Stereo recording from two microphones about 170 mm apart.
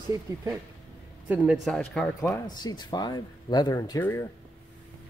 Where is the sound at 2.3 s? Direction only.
25° left (ahead or behind).